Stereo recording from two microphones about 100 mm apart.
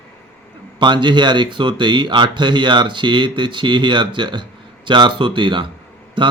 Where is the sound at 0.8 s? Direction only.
50° right (ahead or behind).